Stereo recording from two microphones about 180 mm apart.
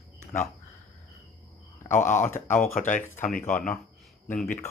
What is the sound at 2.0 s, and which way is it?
Speech, 15° left (ahead or behind).